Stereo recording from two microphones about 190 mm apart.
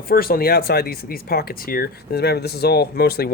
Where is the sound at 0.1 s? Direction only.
50° left (ahead or behind).